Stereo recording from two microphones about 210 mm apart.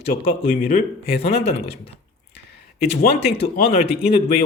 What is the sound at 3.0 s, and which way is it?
Speech, 30° left (ahead or behind).